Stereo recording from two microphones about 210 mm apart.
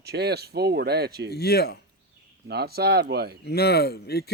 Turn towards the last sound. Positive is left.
turn(degrees=50)  # may be behind; listen again after turning